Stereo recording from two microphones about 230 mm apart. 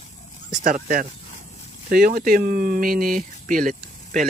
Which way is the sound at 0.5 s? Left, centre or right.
Right.